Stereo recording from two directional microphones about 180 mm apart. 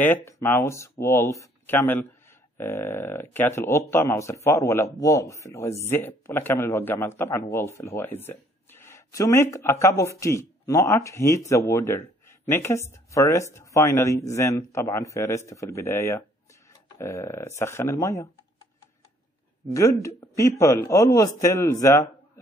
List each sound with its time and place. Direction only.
0.0 s speech: 10° left (ahead or behind)
19.7 s speech: 15° left (ahead or behind)